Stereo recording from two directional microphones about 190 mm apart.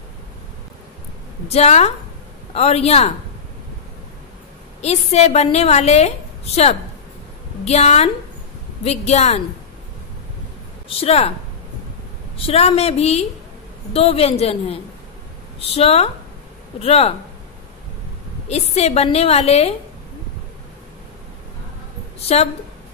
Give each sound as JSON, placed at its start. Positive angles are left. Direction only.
{"t": 1.5, "sound": "a woman's voice", "side_deg": 35}
{"t": 4.8, "sound": "a woman's voice", "side_deg": 35}
{"t": 11.0, "sound": "a woman's voice", "side_deg": 30}
{"t": 12.4, "sound": "a woman's voice", "side_deg": 30}
{"t": 18.5, "sound": "a woman's voice", "side_deg": 35}
{"t": 22.3, "sound": "a woman's voice", "side_deg": 35}